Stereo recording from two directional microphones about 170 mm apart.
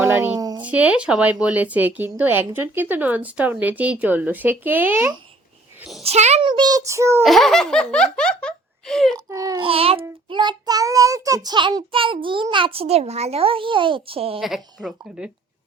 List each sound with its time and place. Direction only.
0.0 s a sound: 15° right (ahead or behind)
0.6 s speech: 10° right (ahead or behind)
6.0 s a child's voice: 40° right (ahead or behind)
6.4 s child singing: 25° right (ahead or behind)
7.2 s laughter: centre (ahead or behind)
9.1 s child singing: 20° right (ahead or behind)
9.6 s child singing: 35° right (ahead or behind)
11.9 s a child's voice: 30° right (ahead or behind)
14.3 s laughter: centre (ahead or behind)